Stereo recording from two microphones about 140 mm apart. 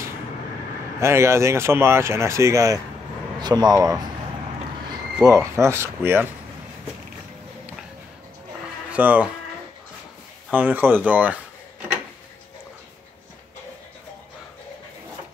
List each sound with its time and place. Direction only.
0.9 s speech: 20° right (ahead or behind)
5.2 s speech: 20° right (ahead or behind)
8.9 s speech: 10° right (ahead or behind)
10.5 s speech: 10° right (ahead or behind)